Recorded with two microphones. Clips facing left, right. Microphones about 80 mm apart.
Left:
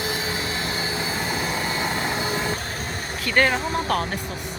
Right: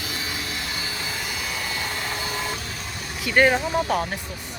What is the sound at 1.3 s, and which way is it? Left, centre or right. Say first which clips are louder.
Train: left 5 dB; left.